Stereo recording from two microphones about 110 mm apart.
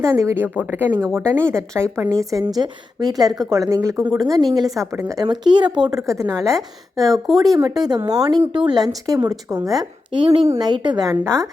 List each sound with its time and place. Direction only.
0.0 s a woman's voice: 25° right (ahead or behind)
1.0 s speech: 10° left (ahead or behind)
1.4 s a woman's voice: 25° right (ahead or behind)
5.2 s speech: 45° right (ahead or behind)
5.7 s speech: 5° right (ahead or behind)
6.1 s a woman's voice: 30° right (ahead or behind)
6.5 s speech: centre (ahead or behind)
7.4 s speech: 35° right (ahead or behind); by 10.5 s 60° right (ahead or behind)
10.6 s speech: 40° right (ahead or behind)
11.1 s a woman's voice: 25° right (ahead or behind)